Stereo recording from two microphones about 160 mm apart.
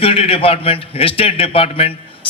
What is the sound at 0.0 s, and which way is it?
A man's voice, 35° left (ahead or behind).